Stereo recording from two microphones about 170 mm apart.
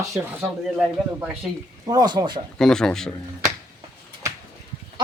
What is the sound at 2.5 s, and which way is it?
Speech, 5° left (ahead or behind).